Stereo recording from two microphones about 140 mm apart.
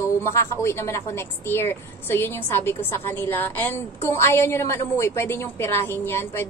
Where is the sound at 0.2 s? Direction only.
20° left (ahead or behind).